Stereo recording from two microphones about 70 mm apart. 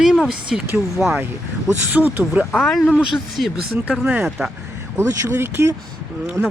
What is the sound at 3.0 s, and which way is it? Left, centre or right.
Speech, centre.